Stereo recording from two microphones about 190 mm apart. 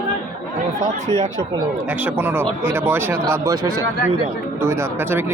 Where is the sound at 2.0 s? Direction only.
10° right (ahead or behind).